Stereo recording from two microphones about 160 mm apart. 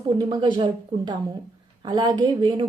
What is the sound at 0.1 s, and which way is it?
Speech, 25° right (ahead or behind).